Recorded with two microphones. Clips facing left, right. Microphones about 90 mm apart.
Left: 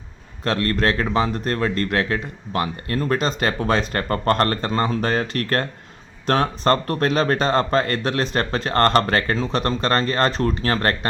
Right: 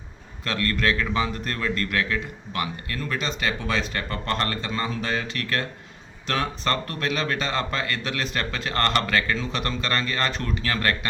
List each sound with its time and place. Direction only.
0.4 s speech: 35° left (ahead or behind)